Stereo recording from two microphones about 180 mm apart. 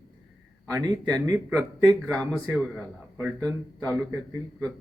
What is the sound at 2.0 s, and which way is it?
A man's voice, 5° left (ahead or behind).